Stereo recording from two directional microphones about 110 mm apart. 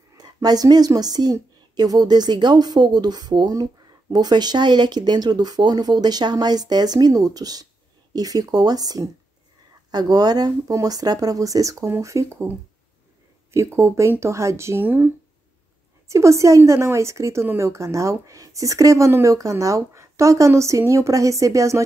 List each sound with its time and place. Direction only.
0.2 s a woman's voice: 40° right (ahead or behind); by 15.0 s 20° right (ahead or behind)
16.1 s a woman's voice: 30° right (ahead or behind)